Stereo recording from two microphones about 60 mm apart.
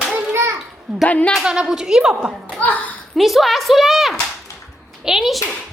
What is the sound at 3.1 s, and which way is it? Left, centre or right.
A woman's voice, centre.